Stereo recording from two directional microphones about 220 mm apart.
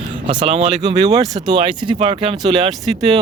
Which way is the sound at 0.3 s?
25° right (ahead or behind).